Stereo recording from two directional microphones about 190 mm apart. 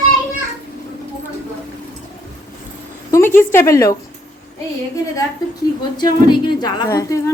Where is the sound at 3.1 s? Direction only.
10° left (ahead or behind).